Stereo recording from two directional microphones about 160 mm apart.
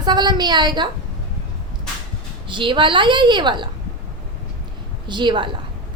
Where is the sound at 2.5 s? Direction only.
30° right (ahead or behind).